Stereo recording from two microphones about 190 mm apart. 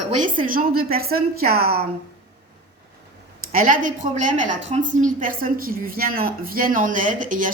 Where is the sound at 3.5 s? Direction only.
45° right (ahead or behind).